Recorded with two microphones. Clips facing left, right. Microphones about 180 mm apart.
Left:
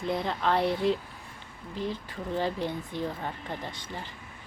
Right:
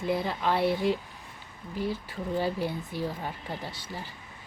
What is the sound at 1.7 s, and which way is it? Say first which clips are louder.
A woman's voice: right 2 dB; 10° right (ahead or behind).